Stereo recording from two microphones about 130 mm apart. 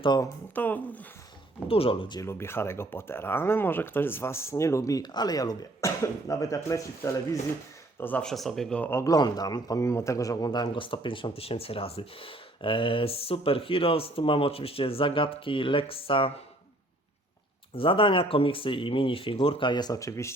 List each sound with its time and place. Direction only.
0.0 s speech: 35° left (ahead or behind)
0.5 s speech: 15° left (ahead or behind)
1.6 s a man's voice: 45° left (ahead or behind)
2.2 s speech: 20° left (ahead or behind)
7.9 s speech: 15° left (ahead or behind)
8.8 s a man's voice: 20° left (ahead or behind); by 16.3 s 45° left (ahead or behind)
17.7 s a man's voice: 40° left (ahead or behind); by 20.3 s 25° left (ahead or behind)